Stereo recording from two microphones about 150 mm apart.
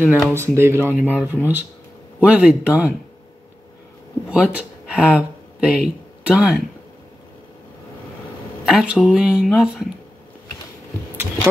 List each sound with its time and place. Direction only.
0.0 s speech: 15° right (ahead or behind)
4.3 s speech: 10° right (ahead or behind)
8.6 s speech: 5° right (ahead or behind)